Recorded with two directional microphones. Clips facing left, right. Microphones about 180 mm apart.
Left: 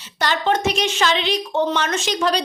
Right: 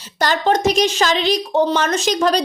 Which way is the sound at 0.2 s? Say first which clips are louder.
Right 3 dB; 40° right (ahead or behind).